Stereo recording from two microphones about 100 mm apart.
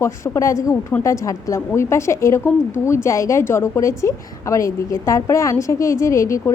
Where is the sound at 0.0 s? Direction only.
30° left (ahead or behind).